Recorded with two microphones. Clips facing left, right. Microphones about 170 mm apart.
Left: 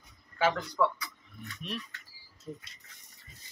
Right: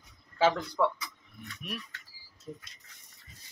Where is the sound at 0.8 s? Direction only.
25° right (ahead or behind).